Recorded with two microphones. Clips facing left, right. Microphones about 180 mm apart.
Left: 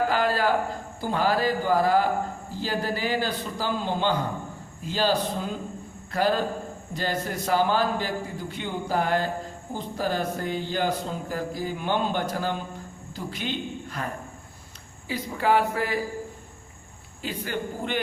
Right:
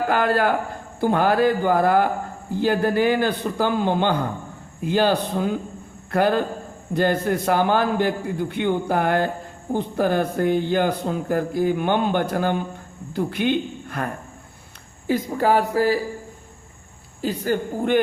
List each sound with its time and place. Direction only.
0.1 s speech: 55° right (ahead or behind)
15.0 s speech: 45° right (ahead or behind)
17.2 s a woman's voice: 40° right (ahead or behind)